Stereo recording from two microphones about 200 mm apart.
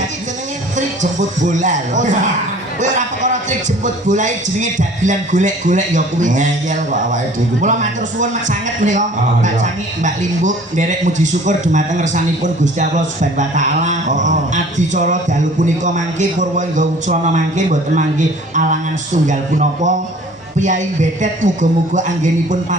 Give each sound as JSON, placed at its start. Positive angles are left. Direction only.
{"t": 1.5, "sound": "speech", "side_deg": -40}
{"t": 3.8, "sound": "speech", "side_deg": -40}